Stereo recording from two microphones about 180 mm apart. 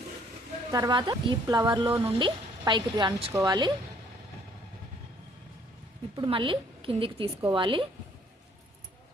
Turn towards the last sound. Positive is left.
turn(degrees=-25)  # may be behind; listen again after turning